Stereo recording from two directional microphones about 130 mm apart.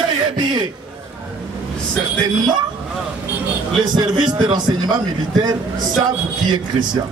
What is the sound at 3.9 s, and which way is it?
Speech, 35° right (ahead or behind).